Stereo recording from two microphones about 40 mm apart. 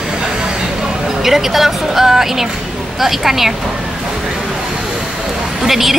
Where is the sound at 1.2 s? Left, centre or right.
Centre.